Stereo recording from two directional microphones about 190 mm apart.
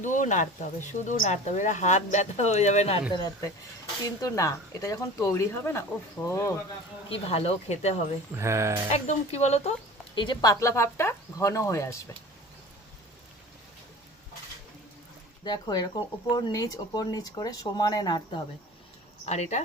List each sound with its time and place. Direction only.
0.0 s speech: 40° left (ahead or behind)
3.2 s speech: 20° left (ahead or behind)
7.1 s speech: 30° left (ahead or behind)
8.4 s speech: 15° right (ahead or behind)
8.9 s speech: 35° left (ahead or behind)
10.2 s speech: 25° left (ahead or behind)
15.4 s speech: 20° left (ahead or behind)
19.2 s speech: 35° left (ahead or behind)